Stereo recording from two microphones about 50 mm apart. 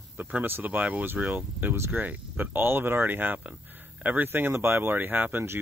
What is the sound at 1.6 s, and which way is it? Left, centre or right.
Speech, right.